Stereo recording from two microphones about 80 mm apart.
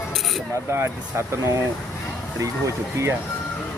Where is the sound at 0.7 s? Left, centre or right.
Right.